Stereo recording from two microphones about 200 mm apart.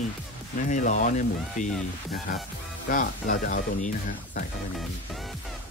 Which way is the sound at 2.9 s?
40° left (ahead or behind).